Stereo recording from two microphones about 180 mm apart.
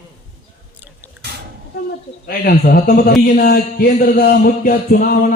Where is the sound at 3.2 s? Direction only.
55° left (ahead or behind).